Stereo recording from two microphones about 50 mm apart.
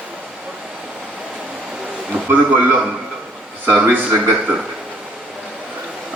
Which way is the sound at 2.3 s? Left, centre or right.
Right.